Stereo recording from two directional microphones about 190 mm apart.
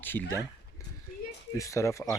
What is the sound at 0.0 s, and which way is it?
Speech, 10° left (ahead or behind).